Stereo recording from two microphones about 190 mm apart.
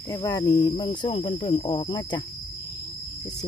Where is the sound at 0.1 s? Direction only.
20° left (ahead or behind).